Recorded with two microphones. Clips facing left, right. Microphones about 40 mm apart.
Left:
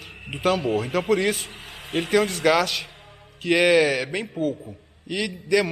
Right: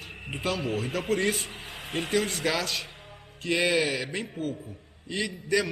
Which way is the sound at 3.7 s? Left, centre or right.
Left.